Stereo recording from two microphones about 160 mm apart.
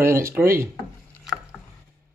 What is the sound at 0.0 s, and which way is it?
Speech, 15° right (ahead or behind).